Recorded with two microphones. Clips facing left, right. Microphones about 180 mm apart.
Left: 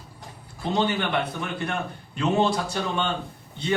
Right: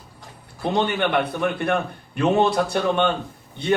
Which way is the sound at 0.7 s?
60° right (ahead or behind).